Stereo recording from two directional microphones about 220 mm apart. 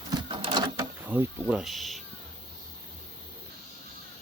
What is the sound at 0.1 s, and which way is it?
Printer, 20° right (ahead or behind).